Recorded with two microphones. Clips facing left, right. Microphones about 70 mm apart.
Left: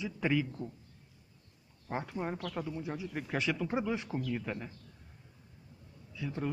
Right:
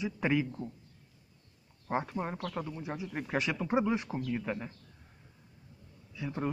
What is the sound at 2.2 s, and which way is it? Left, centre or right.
Speech, centre.